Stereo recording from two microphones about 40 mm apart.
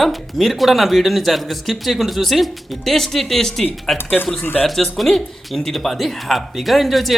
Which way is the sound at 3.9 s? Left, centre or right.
Left.